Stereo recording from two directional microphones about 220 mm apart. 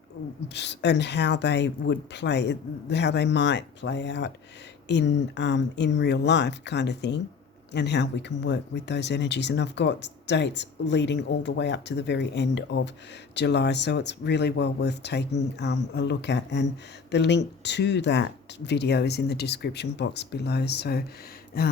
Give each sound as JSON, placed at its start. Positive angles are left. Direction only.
{"t": 0.4, "sound": "speech", "side_deg": 50}